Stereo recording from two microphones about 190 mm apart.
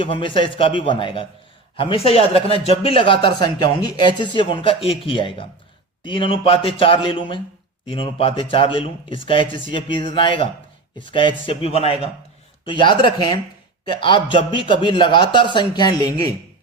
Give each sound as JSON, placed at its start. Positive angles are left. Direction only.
{"t": 0.0, "sound": "a man's voice", "side_deg": 25}